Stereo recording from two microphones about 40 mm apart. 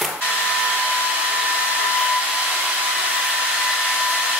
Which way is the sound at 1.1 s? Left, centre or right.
Right.